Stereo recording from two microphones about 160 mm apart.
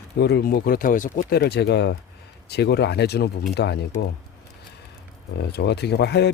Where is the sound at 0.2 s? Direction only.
90° left; by 1.4 s 55° left (ahead or behind).